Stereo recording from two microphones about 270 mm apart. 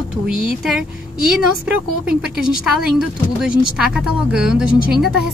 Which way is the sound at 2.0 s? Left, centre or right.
Centre.